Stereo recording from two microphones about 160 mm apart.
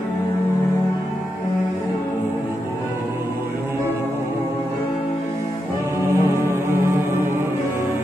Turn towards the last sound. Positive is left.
turn(degrees=-15)  # may be behind; listen again after turning